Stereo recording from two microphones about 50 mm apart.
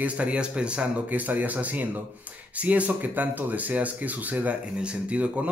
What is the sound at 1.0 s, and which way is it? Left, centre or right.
A man's voice, right.